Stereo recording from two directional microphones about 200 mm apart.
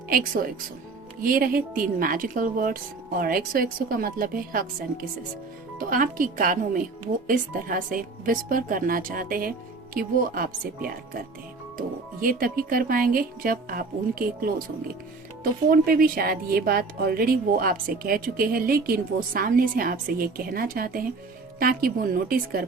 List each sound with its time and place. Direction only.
1.2 s speech: 45° right (ahead or behind)
5.9 s speech: 45° right (ahead or behind)
15.7 s speech: 45° right (ahead or behind)